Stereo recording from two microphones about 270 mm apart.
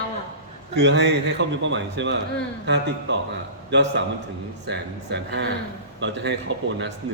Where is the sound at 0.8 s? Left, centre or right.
Right.